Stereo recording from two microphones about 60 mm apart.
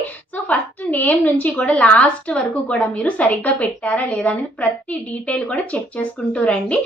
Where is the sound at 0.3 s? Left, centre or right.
Left.